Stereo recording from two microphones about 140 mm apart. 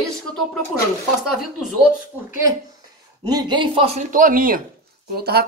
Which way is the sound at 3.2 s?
30° right (ahead or behind).